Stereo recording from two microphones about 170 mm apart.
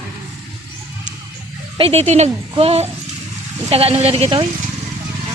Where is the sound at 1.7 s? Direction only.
35° right (ahead or behind).